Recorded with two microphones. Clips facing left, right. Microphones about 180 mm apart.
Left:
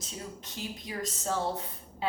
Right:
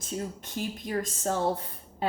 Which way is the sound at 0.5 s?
50° right (ahead or behind).